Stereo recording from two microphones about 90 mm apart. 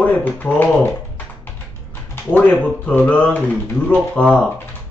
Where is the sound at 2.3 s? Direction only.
15° left (ahead or behind).